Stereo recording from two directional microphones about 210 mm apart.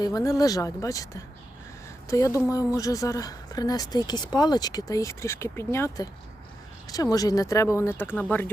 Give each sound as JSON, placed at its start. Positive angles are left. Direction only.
{"t": 0.0, "sound": "speech", "side_deg": 15}